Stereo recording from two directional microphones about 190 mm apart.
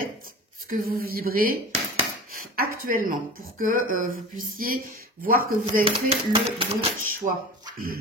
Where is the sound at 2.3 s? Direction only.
50° right (ahead or behind).